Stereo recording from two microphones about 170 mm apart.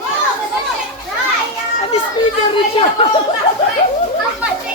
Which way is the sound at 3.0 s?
35° left (ahead or behind).